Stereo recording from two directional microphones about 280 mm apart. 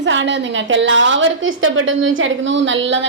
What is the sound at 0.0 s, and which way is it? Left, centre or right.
A woman's voice, right.